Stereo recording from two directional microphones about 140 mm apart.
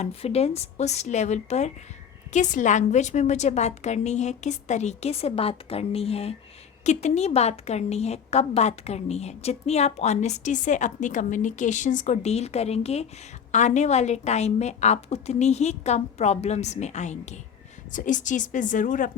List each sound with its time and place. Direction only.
0.0 s a woman's voice: 45° left (ahead or behind)
17.9 s a woman's voice: 65° left (ahead or behind)